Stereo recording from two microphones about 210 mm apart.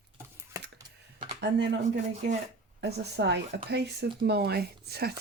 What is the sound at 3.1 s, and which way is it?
Speech, 55° right (ahead or behind).